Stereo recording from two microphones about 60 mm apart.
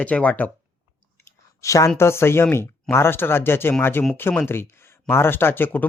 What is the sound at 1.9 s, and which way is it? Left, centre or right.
Speech, left.